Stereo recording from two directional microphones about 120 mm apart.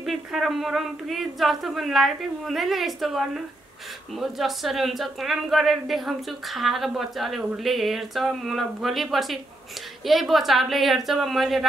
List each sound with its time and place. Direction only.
0.0 s speech: centre (ahead or behind)